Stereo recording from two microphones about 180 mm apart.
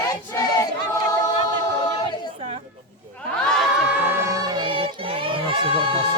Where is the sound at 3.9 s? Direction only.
10° right (ahead or behind).